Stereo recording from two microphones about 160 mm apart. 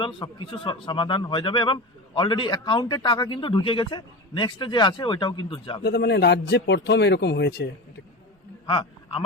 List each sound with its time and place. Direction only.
0.0 s a man's voice: 30° left (ahead or behind)
5.8 s a man's voice: 90° left
8.6 s a sound: 30° left (ahead or behind)